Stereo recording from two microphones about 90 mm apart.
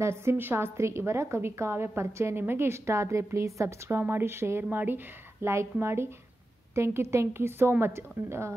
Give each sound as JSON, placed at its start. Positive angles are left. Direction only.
{"t": 0.0, "sound": "a woman's voice", "side_deg": -30}